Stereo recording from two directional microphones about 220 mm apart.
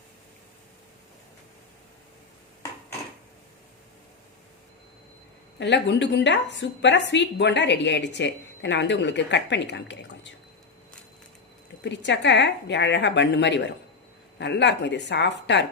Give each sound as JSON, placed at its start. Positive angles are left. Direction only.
{"t": 5.5, "sound": "a woman's voice", "side_deg": 50}
{"t": 11.8, "sound": "a woman's voice", "side_deg": 55}